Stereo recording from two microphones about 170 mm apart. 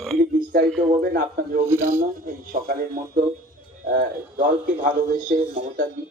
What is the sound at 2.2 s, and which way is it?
A man's voice, 55° right (ahead or behind).